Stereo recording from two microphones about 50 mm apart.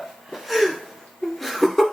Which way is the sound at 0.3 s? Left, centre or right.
Centre.